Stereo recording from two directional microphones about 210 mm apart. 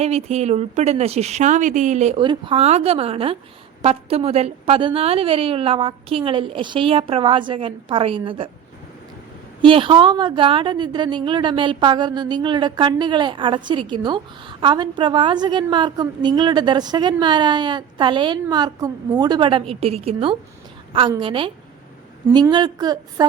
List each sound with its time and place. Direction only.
0.0 s a woman's voice: 30° right (ahead or behind)
9.6 s a woman's voice: 25° right (ahead or behind)